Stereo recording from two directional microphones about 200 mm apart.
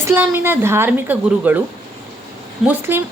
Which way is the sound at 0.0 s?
10° right (ahead or behind).